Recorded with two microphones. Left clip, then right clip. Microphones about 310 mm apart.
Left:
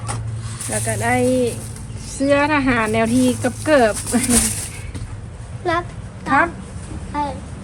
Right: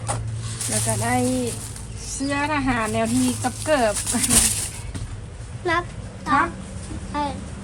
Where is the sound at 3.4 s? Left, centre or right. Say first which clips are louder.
Left 5 dB; centre.